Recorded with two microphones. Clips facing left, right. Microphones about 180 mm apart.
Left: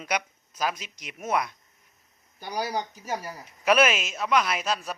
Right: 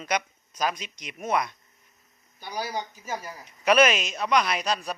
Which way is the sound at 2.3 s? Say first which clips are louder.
Left 2 dB; 45° left (ahead or behind).